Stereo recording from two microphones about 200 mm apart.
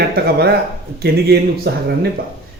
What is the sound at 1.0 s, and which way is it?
Speech, 55° right (ahead or behind).